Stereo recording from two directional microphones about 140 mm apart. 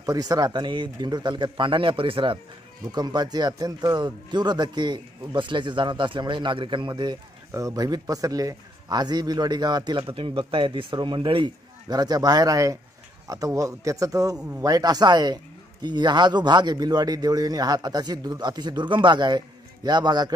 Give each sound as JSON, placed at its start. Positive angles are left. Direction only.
{"t": 0.0, "sound": "speech", "side_deg": -25}